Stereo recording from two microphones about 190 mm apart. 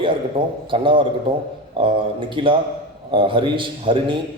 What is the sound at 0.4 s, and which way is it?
A man's voice, 25° right (ahead or behind).